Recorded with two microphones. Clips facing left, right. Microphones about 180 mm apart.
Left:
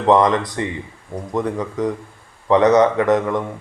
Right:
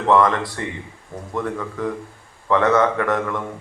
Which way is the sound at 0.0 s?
20° left (ahead or behind).